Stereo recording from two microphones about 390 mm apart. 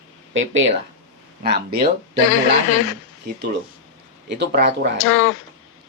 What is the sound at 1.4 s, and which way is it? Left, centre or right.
Speech, right.